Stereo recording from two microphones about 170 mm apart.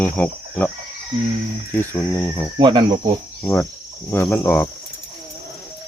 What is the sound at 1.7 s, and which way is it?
Speech, 15° left (ahead or behind).